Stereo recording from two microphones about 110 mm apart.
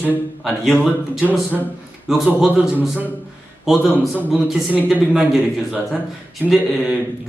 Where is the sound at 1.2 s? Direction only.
15° right (ahead or behind).